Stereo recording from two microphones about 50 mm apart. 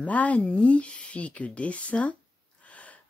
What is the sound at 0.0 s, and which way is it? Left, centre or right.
Speech, left.